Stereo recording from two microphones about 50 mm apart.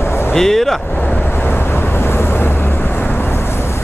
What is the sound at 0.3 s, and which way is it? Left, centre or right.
Speech, centre.